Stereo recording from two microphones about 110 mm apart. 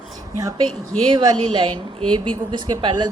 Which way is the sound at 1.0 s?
45° right (ahead or behind).